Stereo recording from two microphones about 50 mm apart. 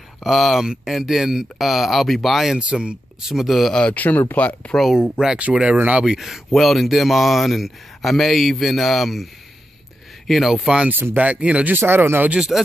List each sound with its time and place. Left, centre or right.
0.2 s speech: centre
2.7 s speech: right
3.3 s speech: centre
3.9 s speech: left
4.9 s speech: centre; by 6.0 s right
6.0 s speech: centre
6.5 s speech: centre
11.1 s speech: right
11.7 s speech: right
12.5 s speech: centre